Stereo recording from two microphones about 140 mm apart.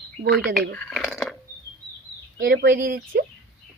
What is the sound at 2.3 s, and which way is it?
Speech, 90° right.